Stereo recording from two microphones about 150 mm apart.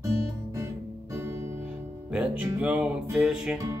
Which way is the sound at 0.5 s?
20° right (ahead or behind).